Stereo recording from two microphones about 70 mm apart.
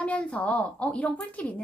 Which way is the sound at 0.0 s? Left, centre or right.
Centre.